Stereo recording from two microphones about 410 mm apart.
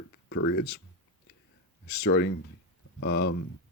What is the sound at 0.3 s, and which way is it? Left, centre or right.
Speech, left.